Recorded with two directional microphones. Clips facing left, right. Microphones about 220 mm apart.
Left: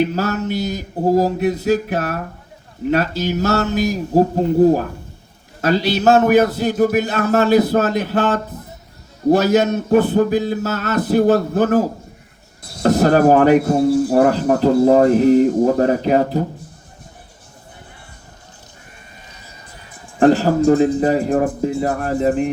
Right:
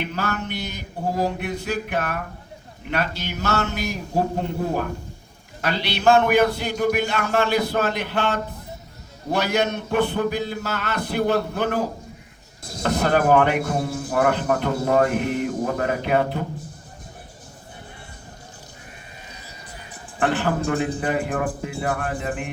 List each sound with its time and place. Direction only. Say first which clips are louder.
0.0 s speech: left 9 dB; 40° left (ahead or behind)
20.1 s speech: left 9 dB; 35° left (ahead or behind)